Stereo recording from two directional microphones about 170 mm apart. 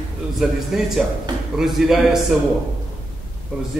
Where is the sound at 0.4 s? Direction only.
Centre (ahead or behind).